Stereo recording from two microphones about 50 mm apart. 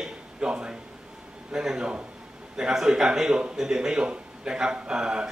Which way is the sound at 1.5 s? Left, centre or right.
Centre.